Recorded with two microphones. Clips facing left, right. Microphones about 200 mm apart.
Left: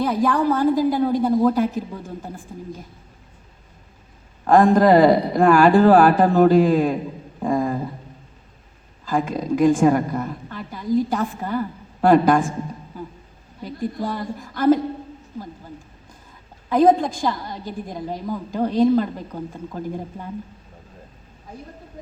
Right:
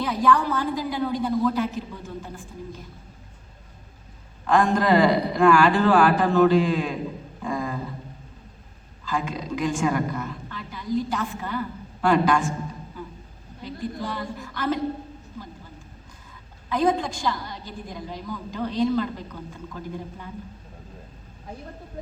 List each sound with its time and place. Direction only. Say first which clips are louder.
0.0 s a woman's voice: left 3 dB; 50° left (ahead or behind)
4.4 s a woman's voice: left 6 dB; 50° left (ahead or behind)
7.5 s a sound: left 7 dB; 50° left (ahead or behind)
9.0 s a woman's voice: left 6 dB; 50° left (ahead or behind)
13.6 s a woman's voice: left 5 dB; 50° left (ahead or behind)
16.6 s a woman's voice: left 7 dB; 45° left (ahead or behind)